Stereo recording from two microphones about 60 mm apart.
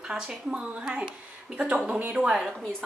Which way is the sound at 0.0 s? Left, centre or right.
Centre.